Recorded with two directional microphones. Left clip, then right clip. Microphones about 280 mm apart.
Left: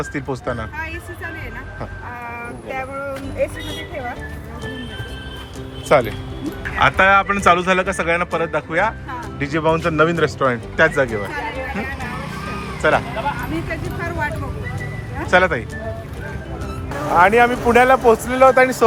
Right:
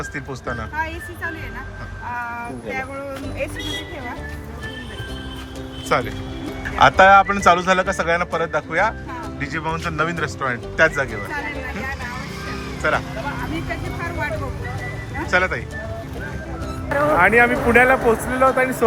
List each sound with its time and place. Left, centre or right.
0.0 s a man's voice: centre
5.9 s a man's voice: centre
12.8 s a man's voice: centre
14.0 s a man's voice: centre
17.2 s speech: centre